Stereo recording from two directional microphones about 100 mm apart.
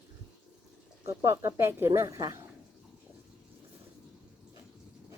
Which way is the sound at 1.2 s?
25° right (ahead or behind).